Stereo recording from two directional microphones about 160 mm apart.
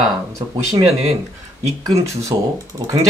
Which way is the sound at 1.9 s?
20° right (ahead or behind).